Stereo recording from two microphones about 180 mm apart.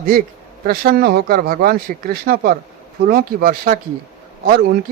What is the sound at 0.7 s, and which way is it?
Speech, 55° right (ahead or behind).